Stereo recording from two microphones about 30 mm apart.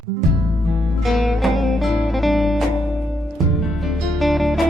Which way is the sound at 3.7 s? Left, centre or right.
Centre.